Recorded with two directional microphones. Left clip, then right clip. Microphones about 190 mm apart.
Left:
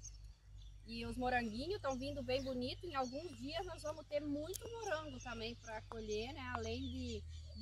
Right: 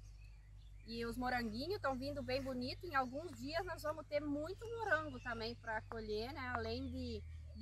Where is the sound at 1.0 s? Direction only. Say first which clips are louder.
Left 2 dB; 15° left (ahead or behind).